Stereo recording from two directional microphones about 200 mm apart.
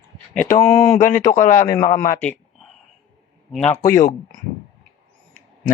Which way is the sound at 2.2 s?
5° left (ahead or behind).